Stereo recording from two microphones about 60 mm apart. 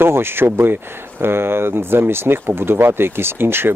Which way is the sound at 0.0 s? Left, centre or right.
Right.